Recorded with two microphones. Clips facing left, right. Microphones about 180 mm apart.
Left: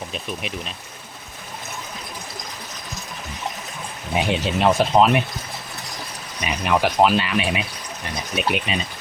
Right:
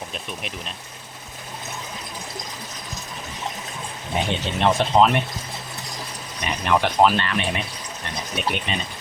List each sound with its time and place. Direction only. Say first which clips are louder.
0.1 s speech: left 3 dB; centre (ahead or behind)
4.2 s speech: left 3 dB; 5° left (ahead or behind)
6.4 s speech: left 1 dB; 5° left (ahead or behind)